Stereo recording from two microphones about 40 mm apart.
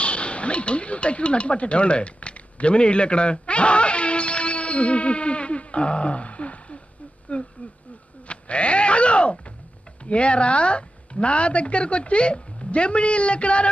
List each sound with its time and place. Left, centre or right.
0.0 s speech: left